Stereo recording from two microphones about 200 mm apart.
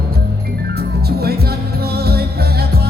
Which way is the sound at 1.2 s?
50° right (ahead or behind).